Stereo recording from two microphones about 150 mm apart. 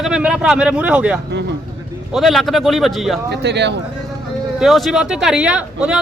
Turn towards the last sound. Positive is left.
turn(degrees=-5)  # may be behind; listen again after turning